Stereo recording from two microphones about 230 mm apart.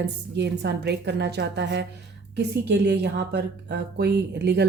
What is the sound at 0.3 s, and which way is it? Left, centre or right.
A woman's voice, right.